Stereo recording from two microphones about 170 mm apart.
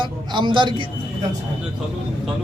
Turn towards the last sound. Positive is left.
turn(degrees=-25)  # may be behind; listen again after turning